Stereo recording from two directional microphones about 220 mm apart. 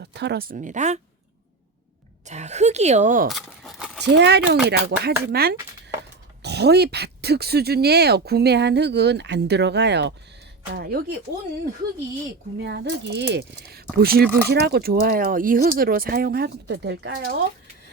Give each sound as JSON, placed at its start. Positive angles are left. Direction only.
{"t": 0.0, "sound": "a woman's voice", "side_deg": -50}
{"t": 2.2, "sound": "a woman's voice", "side_deg": -30}
{"t": 3.3, "sound": "keys jangling", "side_deg": 0}
{"t": 4.0, "sound": "speech", "side_deg": -50}
{"t": 12.6, "sound": "speech", "side_deg": -50}